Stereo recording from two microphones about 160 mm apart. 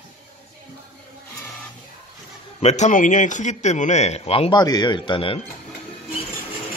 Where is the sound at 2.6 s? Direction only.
45° left (ahead or behind).